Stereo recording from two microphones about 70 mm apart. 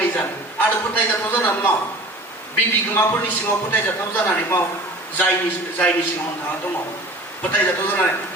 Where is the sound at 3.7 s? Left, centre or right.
Left.